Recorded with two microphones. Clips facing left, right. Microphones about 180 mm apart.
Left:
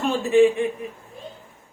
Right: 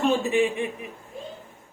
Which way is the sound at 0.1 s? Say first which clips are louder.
Left 4 dB; 15° right (ahead or behind).